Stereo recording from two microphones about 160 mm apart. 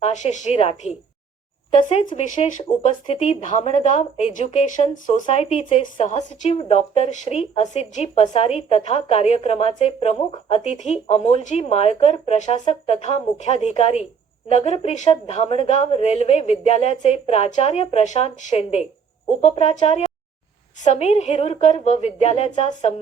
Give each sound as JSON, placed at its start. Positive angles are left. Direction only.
{"t": 0.0, "sound": "a woman's voice", "side_deg": 50}